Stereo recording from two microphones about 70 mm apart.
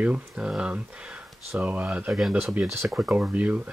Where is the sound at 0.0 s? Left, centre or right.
Centre.